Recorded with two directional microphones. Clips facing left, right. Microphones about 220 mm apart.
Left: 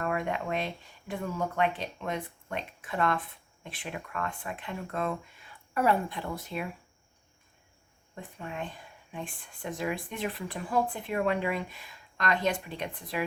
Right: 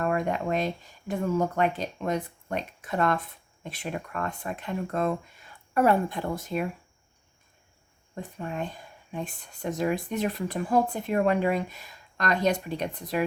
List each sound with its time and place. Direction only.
0.0 s speech: 40° right (ahead or behind)
8.1 s speech: 40° right (ahead or behind)